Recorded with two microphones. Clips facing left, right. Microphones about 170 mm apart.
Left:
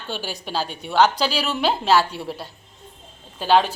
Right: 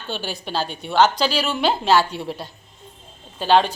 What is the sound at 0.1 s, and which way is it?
A woman's voice, 10° left (ahead or behind).